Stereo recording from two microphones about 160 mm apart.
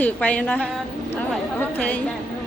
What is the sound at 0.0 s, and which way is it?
A woman's voice, 10° left (ahead or behind).